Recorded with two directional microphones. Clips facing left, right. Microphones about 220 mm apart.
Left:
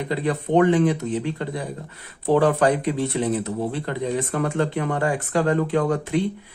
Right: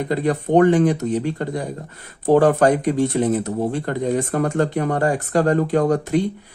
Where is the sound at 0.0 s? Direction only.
45° right (ahead or behind).